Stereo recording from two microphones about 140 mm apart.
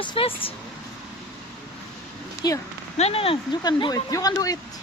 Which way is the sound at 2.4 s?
25° left (ahead or behind).